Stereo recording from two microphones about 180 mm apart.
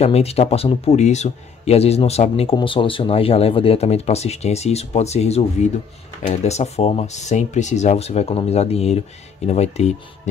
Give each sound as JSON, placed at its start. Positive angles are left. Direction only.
{"t": 0.0, "sound": "a man's voice", "side_deg": 35}